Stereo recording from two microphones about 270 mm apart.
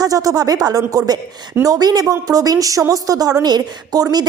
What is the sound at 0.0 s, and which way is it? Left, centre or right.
A woman's voice, centre.